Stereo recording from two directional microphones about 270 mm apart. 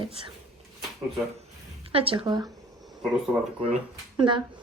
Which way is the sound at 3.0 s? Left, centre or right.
Centre.